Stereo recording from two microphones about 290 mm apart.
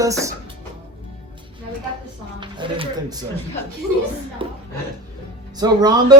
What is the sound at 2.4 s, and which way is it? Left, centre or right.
Speech, centre.